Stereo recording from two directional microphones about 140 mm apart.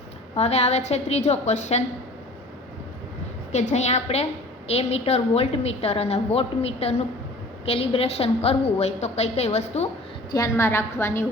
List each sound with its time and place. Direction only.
0.3 s a woman's voice: 50° left (ahead or behind)
3.5 s a woman's voice: 55° left (ahead or behind)
10.3 s a woman's voice: 20° left (ahead or behind)